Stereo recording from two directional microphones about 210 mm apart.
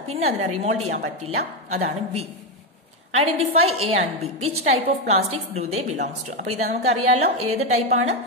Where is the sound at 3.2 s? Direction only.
30° right (ahead or behind).